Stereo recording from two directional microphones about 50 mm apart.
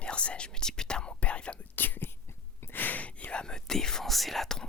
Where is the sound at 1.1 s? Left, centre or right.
Left.